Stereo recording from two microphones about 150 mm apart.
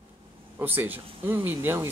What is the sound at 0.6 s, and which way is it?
Speech, 15° right (ahead or behind).